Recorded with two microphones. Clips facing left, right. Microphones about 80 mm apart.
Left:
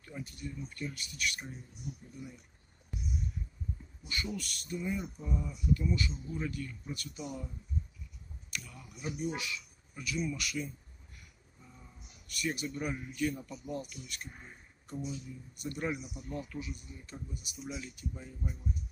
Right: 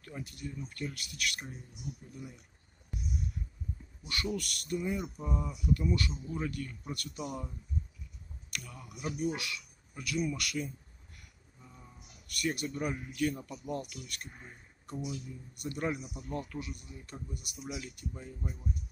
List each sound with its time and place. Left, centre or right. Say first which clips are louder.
0.0 s speech: right 1 dB; right
4.1 s speech: right 3 dB; right
8.5 s speech: right 1 dB; right
12.3 s a man's voice: right 2 dB; right